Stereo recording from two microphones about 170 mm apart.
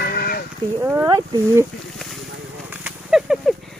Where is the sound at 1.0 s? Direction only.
25° right (ahead or behind).